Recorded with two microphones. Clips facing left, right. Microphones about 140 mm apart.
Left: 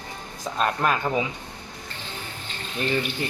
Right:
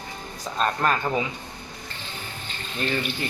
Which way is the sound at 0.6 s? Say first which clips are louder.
Even; 10° left (ahead or behind).